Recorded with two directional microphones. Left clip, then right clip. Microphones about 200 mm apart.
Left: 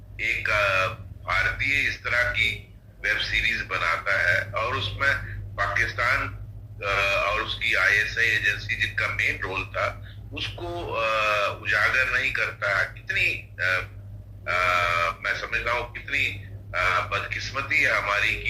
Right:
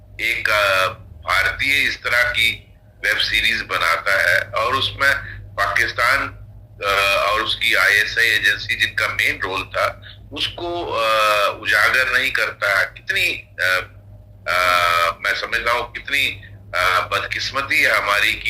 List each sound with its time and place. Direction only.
0.2 s speech: 35° right (ahead or behind)